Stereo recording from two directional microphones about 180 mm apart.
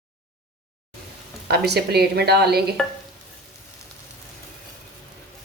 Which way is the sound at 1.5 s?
65° right (ahead or behind).